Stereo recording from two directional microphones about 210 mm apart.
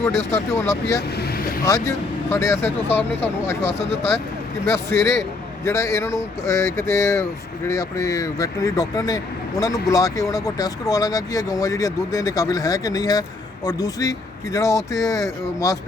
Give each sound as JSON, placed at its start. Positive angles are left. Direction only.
{"t": 0.5, "sound": "speech", "side_deg": 15}
{"t": 1.1, "sound": "vehicle", "side_deg": 45}
{"t": 1.6, "sound": "speech", "side_deg": 15}